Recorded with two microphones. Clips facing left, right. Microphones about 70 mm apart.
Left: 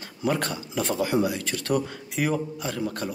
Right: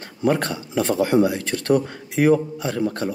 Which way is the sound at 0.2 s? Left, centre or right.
Right.